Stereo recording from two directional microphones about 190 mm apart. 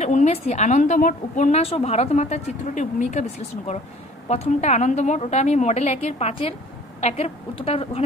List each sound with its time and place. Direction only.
0.0 s a woman's voice: 35° left (ahead or behind)